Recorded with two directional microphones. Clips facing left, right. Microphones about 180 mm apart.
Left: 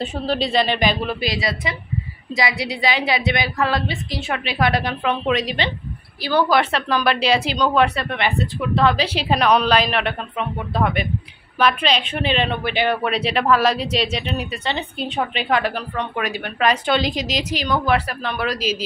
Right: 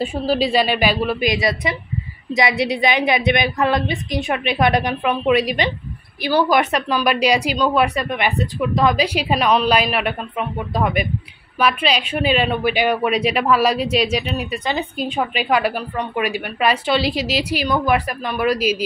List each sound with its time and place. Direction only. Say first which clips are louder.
0.0 s a woman's voice: right 3 dB; 10° right (ahead or behind)